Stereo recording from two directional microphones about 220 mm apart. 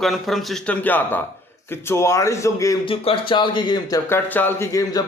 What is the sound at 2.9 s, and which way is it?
Speech, 25° left (ahead or behind).